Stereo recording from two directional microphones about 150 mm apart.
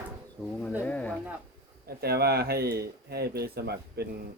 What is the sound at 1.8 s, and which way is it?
Speech, 90° right.